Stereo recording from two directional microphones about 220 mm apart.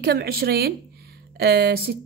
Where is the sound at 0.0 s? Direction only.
45° right (ahead or behind).